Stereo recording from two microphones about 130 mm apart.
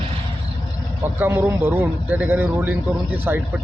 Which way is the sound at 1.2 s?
15° right (ahead or behind).